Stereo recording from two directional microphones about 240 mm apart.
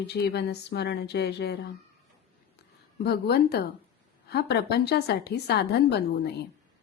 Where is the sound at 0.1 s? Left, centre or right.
Left.